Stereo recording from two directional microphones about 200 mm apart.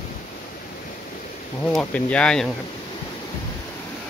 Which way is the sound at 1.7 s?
5° left (ahead or behind).